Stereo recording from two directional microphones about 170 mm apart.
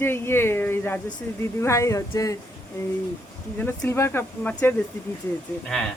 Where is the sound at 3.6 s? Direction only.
10° left (ahead or behind).